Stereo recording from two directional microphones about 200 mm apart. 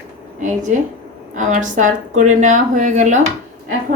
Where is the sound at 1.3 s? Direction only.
40° right (ahead or behind).